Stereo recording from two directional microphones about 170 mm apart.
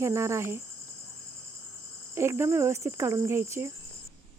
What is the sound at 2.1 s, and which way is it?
Speech, 15° right (ahead or behind).